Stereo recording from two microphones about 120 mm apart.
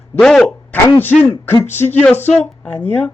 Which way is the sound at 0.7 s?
15° left (ahead or behind).